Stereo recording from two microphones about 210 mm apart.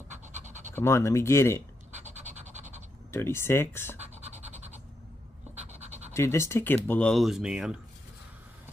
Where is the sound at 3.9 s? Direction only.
30° right (ahead or behind).